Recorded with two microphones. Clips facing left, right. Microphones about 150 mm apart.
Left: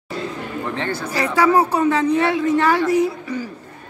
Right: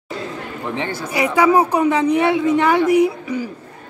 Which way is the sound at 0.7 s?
15° right (ahead or behind).